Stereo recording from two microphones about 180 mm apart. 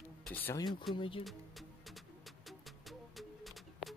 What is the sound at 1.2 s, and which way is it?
Music, centre (ahead or behind).